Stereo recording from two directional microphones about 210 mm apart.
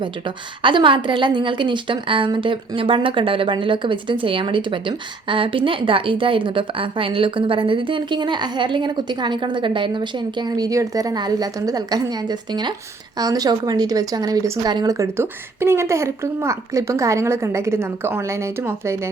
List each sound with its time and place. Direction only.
0.0 s a woman's voice: 25° right (ahead or behind)